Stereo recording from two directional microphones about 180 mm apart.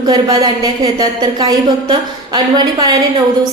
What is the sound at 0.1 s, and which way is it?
A woman's voice, 20° right (ahead or behind).